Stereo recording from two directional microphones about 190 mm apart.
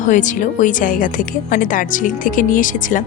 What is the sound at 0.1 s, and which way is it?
Speech, 40° left (ahead or behind).